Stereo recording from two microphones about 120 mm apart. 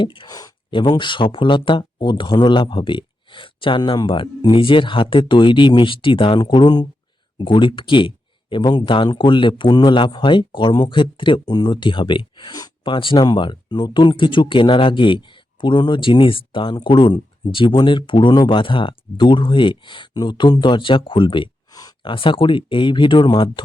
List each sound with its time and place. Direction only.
0.0 s speech: 45° left (ahead or behind)
0.3 s speech: 30° left (ahead or behind)
0.7 s speech: 45° left (ahead or behind)
22.1 s speech: 45° left (ahead or behind)